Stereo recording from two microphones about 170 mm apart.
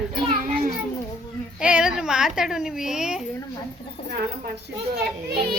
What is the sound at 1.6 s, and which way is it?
A woman's voice, 5° right (ahead or behind).